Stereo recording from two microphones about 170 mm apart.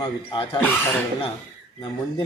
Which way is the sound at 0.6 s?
10° left (ahead or behind).